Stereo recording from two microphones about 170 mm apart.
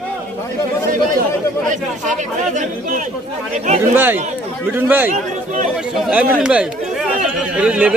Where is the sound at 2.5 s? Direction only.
45° right (ahead or behind).